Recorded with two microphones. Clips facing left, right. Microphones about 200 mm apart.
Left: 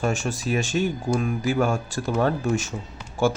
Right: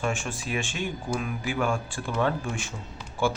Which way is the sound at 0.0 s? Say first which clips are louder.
Left 5 dB; 40° left (ahead or behind).